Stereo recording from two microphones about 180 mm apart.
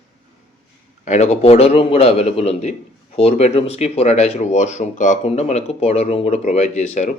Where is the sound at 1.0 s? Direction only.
40° left (ahead or behind).